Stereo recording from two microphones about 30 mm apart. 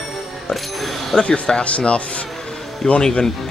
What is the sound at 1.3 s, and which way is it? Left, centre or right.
Speech, left.